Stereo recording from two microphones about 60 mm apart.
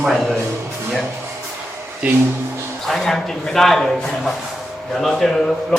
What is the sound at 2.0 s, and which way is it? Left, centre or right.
Speech, right.